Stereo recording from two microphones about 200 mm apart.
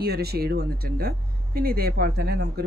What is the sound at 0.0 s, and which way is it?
Speech, 50° right (ahead or behind).